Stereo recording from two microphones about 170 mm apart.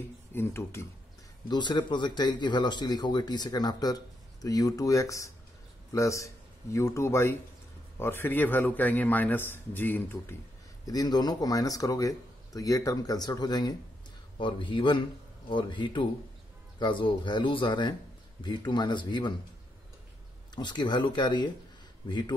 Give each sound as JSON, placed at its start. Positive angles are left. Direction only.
{"t": 0.3, "sound": "speech", "side_deg": 15}
{"t": 1.5, "sound": "speech", "side_deg": 25}
{"t": 10.9, "sound": "speech", "side_deg": 25}
{"t": 20.5, "sound": "a man's voice", "side_deg": 25}